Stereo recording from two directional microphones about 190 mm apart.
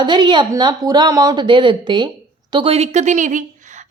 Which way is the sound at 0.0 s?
25° right (ahead or behind).